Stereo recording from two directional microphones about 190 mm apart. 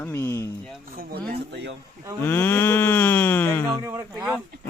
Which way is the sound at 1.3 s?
60° right (ahead or behind).